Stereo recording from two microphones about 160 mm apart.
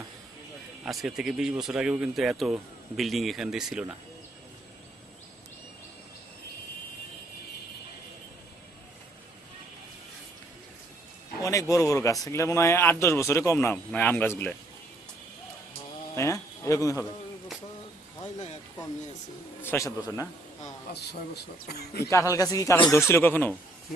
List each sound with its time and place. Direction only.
0.9 s speech: centre (ahead or behind)
11.4 s a man's voice: 20° left (ahead or behind)
16.1 s a man's voice: 20° left (ahead or behind)
19.6 s a man's voice: 15° left (ahead or behind)
20.9 s speech: 90° left
22.0 s a man's voice: 20° left (ahead or behind)